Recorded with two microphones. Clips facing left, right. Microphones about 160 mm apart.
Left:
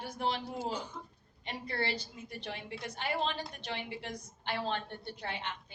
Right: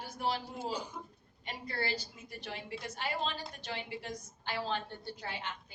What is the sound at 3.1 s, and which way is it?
A woman's voice, 25° left (ahead or behind).